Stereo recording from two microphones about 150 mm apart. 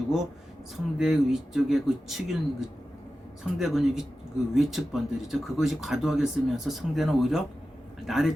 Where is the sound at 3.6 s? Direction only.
Centre (ahead or behind).